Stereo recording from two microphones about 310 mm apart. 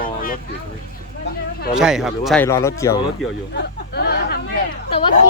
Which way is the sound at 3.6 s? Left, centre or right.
Left.